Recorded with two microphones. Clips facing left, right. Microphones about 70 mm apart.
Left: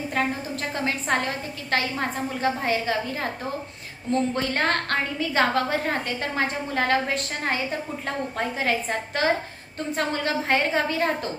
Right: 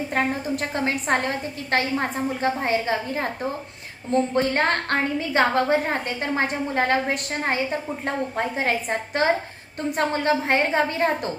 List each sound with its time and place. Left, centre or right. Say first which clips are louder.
0.2 s a woman's voice: right 2 dB; right